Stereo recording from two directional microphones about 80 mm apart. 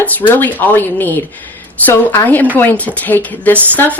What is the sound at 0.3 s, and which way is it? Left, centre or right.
Speech, left.